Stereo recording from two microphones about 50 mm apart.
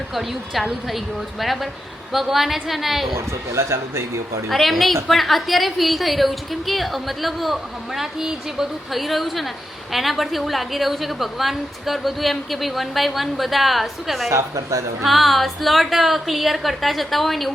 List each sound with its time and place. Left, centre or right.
0.1 s a woman's voice: centre
3.2 s speech: right
4.4 s a woman's voice: centre
14.3 s a woman's voice: right
15.0 s a woman's voice: centre